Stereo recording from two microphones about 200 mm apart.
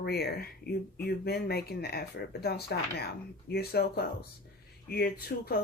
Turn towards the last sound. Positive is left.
turn(degrees=50)  # may be behind; listen again after turning